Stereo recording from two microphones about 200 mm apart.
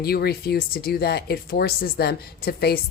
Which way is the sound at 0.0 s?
50° left (ahead or behind).